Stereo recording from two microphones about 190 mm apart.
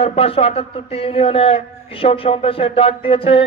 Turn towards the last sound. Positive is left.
turn(degrees=30)  # may be behind; listen again after turning